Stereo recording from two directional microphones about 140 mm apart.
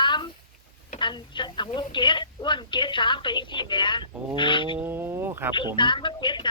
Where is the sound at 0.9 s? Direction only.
35° left (ahead or behind).